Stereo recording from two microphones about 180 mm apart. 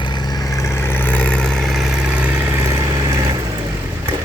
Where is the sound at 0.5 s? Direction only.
15° left (ahead or behind); by 2.8 s 10° right (ahead or behind).